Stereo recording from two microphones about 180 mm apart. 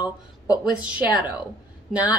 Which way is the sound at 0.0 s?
20° left (ahead or behind).